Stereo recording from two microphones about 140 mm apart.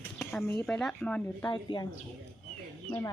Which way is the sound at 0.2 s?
Centre (ahead or behind).